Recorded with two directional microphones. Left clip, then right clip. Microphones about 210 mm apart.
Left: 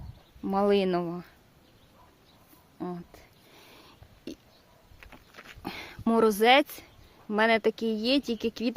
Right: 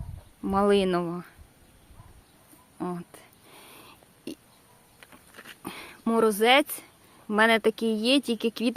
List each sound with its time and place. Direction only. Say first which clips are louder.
0.4 s speech: right 2 dB; centre (ahead or behind)
2.7 s a sound: right 3 dB; 10° right (ahead or behind)
5.6 s speech: left 1 dB; 10° left (ahead or behind)